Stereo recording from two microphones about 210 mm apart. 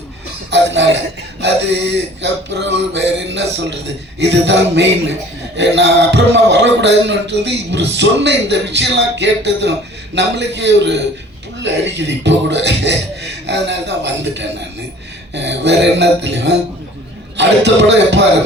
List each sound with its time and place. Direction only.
0.5 s speech: 55° right (ahead or behind)